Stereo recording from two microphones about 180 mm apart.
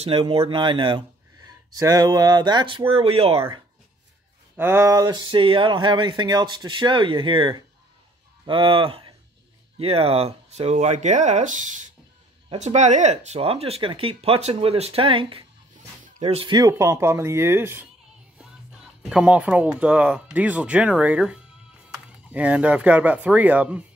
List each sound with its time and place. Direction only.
0.0 s speech: 30° right (ahead or behind)
4.6 s speech: 15° right (ahead or behind)